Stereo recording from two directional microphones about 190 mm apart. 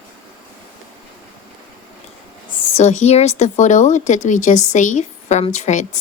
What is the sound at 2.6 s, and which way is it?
Speech, 35° left (ahead or behind).